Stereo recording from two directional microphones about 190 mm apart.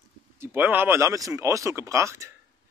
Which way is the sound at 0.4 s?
10° right (ahead or behind).